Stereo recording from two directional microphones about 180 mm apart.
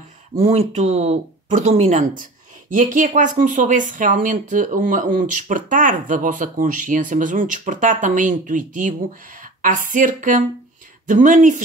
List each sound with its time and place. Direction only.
0.4 s speech: 35° right (ahead or behind)